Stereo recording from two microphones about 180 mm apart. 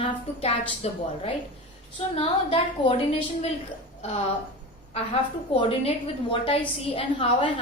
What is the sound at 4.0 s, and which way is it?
A woman's voice, 35° left (ahead or behind).